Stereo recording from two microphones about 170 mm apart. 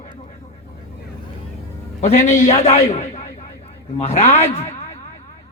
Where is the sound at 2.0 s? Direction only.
45° left (ahead or behind).